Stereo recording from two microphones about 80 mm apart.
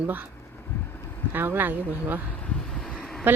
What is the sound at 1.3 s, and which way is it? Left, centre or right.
Speech, right.